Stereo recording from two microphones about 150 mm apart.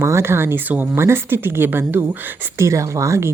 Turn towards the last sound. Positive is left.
turn(degrees=-20)  # may be behind; listen again after turning